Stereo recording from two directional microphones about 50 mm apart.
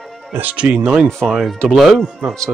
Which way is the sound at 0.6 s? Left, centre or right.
Right.